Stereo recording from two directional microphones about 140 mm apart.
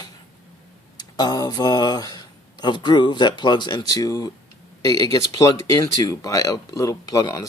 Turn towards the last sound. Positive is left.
turn(degrees=25)  # may be behind; listen again after turning